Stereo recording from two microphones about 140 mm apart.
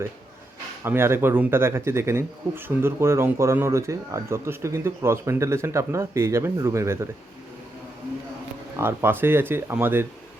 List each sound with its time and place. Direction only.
0.9 s speech: 15° right (ahead or behind)
8.7 s speech: 15° right (ahead or behind)